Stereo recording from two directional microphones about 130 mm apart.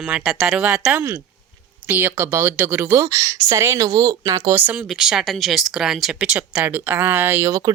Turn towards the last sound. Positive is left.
turn(degrees=-20)  # may be behind; listen again after turning